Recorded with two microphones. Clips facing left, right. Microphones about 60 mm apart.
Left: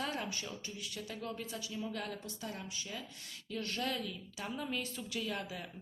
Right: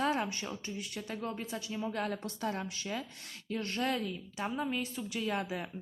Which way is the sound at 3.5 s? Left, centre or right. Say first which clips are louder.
Right 4 dB; right.